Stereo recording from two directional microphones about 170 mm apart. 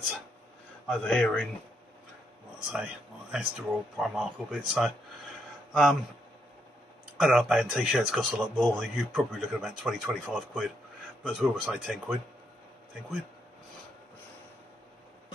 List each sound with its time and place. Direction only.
0.8 s speech: 5° left (ahead or behind)
2.7 s speech: 5° right (ahead or behind)
7.2 s speech: centre (ahead or behind)